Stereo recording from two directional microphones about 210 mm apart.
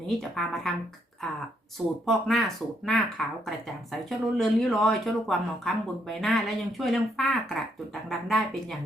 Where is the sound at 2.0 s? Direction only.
Centre (ahead or behind).